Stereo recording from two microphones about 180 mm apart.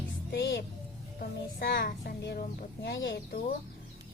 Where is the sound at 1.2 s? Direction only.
55° left (ahead or behind).